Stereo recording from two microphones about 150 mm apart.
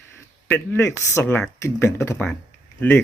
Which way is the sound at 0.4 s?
15° left (ahead or behind).